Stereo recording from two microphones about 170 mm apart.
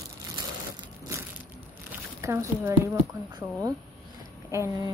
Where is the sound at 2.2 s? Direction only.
15° right (ahead or behind).